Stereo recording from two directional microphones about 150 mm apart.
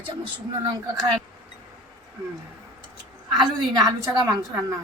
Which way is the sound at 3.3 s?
25° right (ahead or behind).